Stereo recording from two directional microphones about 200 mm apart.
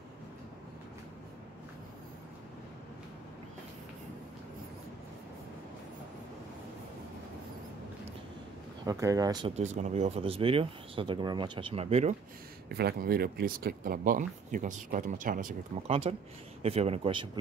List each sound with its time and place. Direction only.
8.8 s speech: 15° right (ahead or behind)
9.6 s speech: 35° right (ahead or behind)
12.6 s speech: 50° right (ahead or behind)
15.9 s speech: 30° right (ahead or behind)